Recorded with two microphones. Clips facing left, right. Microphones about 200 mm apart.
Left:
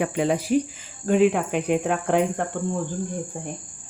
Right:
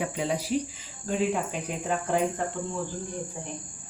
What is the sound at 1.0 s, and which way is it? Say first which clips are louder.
Speech: left 8 dB; 65° left (ahead or behind).